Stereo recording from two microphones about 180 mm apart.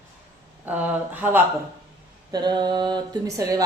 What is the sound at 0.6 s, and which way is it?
Speech, 10° right (ahead or behind).